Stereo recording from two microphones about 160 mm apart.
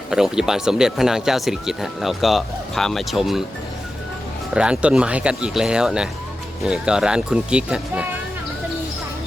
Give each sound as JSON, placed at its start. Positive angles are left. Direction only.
{"t": 0.1, "sound": "speech", "side_deg": -5}
{"t": 4.5, "sound": "speech", "side_deg": -5}